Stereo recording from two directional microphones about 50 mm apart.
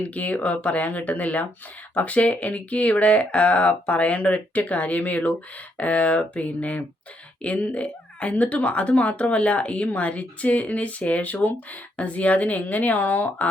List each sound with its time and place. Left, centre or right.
0.0 s speech: left